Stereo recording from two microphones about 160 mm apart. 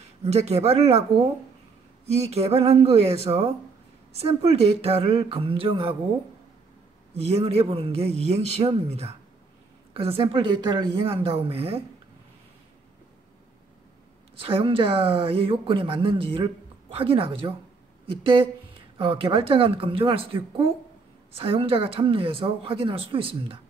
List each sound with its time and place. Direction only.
0.2 s speech: 40° right (ahead or behind)
2.0 s speech: 40° right (ahead or behind)
7.2 s speech: 40° right (ahead or behind)
14.4 s speech: 35° right (ahead or behind)
18.9 s speech: 30° right (ahead or behind)